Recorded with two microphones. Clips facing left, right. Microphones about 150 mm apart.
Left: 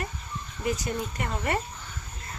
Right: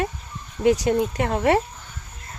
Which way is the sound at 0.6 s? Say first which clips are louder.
Right 11 dB; 80° right.